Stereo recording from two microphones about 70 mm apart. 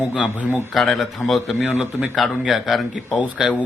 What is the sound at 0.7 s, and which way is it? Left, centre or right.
Speech, centre.